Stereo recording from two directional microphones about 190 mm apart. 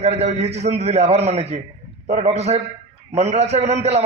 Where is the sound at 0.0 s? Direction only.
35° right (ahead or behind).